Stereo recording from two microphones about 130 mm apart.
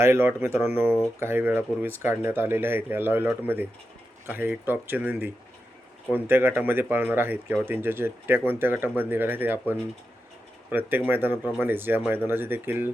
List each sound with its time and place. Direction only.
0.0 s speech: 20° right (ahead or behind)